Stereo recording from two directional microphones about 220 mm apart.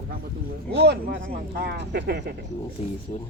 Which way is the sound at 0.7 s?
50° right (ahead or behind).